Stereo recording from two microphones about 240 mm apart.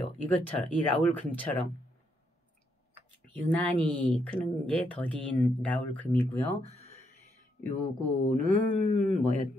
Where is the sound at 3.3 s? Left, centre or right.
Centre.